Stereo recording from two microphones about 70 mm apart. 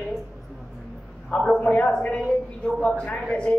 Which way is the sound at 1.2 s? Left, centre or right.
Centre.